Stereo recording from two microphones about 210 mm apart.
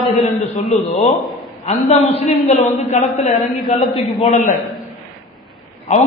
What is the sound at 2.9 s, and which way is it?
Speech, 30° left (ahead or behind).